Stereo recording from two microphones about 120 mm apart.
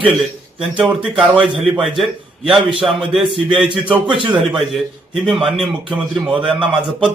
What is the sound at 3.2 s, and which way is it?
Speech, 45° right (ahead or behind).